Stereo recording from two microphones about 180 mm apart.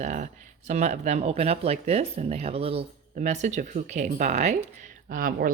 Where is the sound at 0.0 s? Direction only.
45° right (ahead or behind).